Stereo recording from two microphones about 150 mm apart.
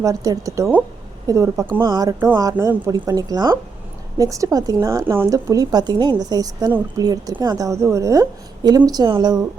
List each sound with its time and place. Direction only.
0.0 s a woman's voice: 20° right (ahead or behind)